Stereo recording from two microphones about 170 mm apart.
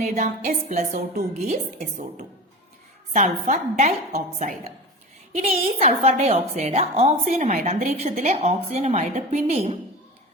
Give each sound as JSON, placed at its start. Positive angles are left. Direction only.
{"t": 0.0, "sound": "a woman's voice", "side_deg": -45}